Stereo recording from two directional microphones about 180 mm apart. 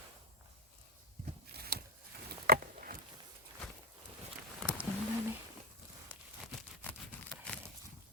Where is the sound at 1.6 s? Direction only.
60° right (ahead or behind).